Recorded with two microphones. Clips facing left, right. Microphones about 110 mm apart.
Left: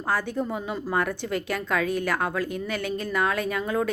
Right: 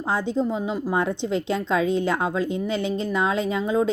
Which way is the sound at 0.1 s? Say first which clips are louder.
Right 3 dB; 20° right (ahead or behind).